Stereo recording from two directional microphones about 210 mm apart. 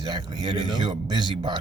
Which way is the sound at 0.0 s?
20° right (ahead or behind).